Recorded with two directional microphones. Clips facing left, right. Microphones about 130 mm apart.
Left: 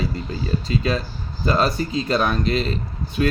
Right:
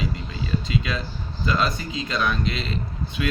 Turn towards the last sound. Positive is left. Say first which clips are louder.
# left 5 dB
turn(degrees=40)  # may be behind; listen again after turning